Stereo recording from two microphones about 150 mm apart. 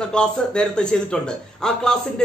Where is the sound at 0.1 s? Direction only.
5° left (ahead or behind).